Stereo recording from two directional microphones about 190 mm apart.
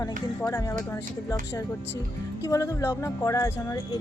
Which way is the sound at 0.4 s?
20° left (ahead or behind).